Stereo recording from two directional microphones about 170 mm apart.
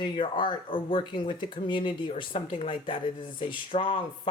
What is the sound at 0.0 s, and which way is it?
Speech, 30° left (ahead or behind).